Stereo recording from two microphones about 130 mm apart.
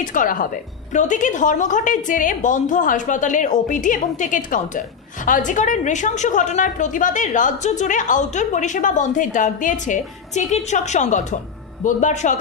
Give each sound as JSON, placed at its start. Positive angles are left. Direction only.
{"t": 0.0, "sound": "a woman's voice", "side_deg": 90}
{"t": 0.9, "sound": "a woman's voice", "side_deg": 75}